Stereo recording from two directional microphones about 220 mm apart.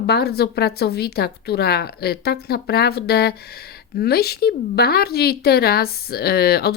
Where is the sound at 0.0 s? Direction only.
45° left (ahead or behind).